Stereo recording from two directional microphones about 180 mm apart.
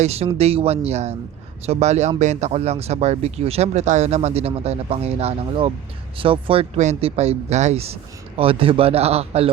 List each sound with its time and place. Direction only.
0.0 s speech: 35° right (ahead or behind)